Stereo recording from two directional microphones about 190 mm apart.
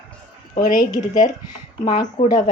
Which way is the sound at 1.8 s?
25° left (ahead or behind).